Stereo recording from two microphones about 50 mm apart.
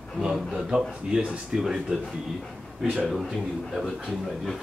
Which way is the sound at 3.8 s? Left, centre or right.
Centre.